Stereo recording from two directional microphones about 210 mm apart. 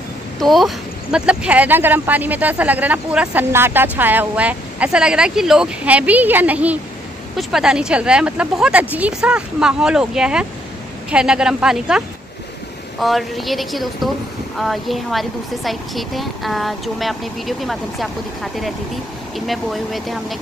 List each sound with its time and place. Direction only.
0.4 s speech: centre (ahead or behind)
13.0 s speech: centre (ahead or behind)